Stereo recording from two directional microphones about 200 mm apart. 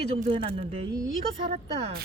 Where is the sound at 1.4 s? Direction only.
35° right (ahead or behind).